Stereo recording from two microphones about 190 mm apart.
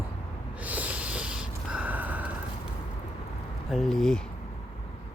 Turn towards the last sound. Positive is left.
turn(degrees=0)  # may be behind; listen again after turning